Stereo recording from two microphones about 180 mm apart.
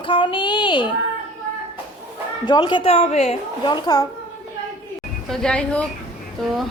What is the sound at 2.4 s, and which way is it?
A woman's voice, 25° left (ahead or behind).